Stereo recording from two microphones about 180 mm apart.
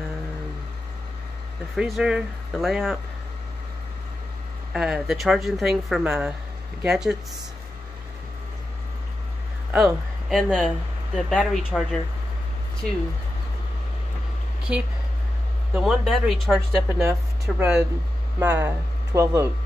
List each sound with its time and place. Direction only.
1.8 s a woman's voice: 5° right (ahead or behind)
4.7 s a woman's voice: 5° right (ahead or behind)
9.7 s a woman's voice: centre (ahead or behind)
14.7 s a woman's voice: 5° right (ahead or behind)